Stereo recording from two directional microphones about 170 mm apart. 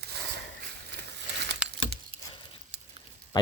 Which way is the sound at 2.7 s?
90° right.